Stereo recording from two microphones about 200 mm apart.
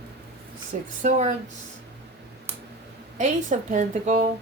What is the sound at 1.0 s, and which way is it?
Speech, 35° right (ahead or behind).